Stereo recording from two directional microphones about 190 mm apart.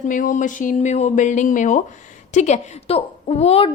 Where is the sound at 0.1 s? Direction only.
40° left (ahead or behind).